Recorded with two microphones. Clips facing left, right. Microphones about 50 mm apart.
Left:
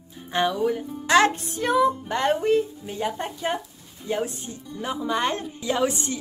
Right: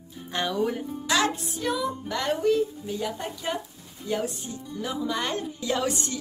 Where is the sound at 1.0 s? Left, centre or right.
Left.